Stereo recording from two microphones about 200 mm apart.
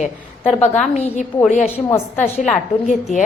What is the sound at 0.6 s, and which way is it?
Speech, 35° left (ahead or behind).